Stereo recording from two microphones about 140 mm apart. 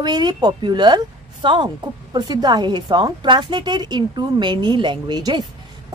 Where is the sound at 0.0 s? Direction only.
30° right (ahead or behind).